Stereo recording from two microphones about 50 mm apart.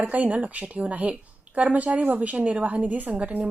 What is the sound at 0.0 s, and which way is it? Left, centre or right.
A woman's voice, right.